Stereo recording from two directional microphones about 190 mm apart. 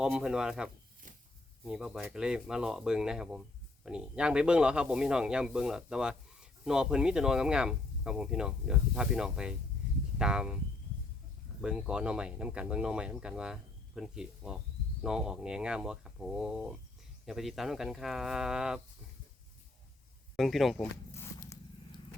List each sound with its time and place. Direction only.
0.0 s speech: 5° right (ahead or behind)
1.0 s a sound: 45° right (ahead or behind)
1.6 s speech: 5° right (ahead or behind)
11.6 s speech: 5° right (ahead or behind)
20.3 s speech: centre (ahead or behind)
21.1 s zipper: 15° left (ahead or behind)